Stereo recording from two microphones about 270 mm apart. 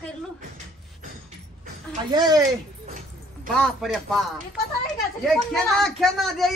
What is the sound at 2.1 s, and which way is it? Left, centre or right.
Speech, centre.